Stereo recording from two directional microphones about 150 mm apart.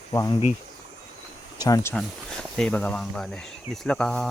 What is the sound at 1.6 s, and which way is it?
Speech, 25° left (ahead or behind).